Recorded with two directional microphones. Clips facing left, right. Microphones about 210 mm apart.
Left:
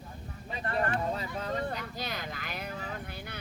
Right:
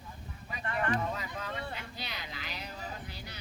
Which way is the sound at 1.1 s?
30° left (ahead or behind).